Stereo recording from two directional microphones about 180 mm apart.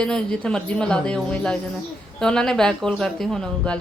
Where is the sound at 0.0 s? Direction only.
5° left (ahead or behind).